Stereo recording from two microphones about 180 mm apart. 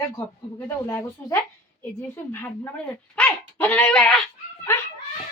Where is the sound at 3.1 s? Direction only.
5° left (ahead or behind).